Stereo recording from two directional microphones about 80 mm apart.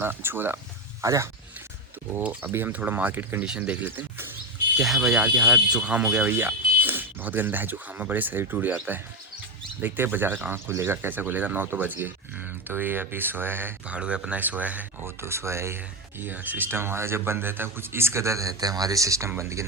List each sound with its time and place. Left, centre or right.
0.0 s speech: right
1.0 s speech: right
2.2 s speech: right
4.8 s speech: centre; by 8.8 s right
9.8 s speech: right
13.8 s speech: centre
15.0 s speech: right